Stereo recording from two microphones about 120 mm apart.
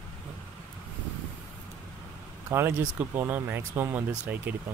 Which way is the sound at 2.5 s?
20° right (ahead or behind).